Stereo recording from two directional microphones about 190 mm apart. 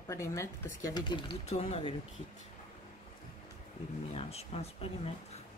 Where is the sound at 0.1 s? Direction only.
15° left (ahead or behind); by 2.0 s 30° left (ahead or behind).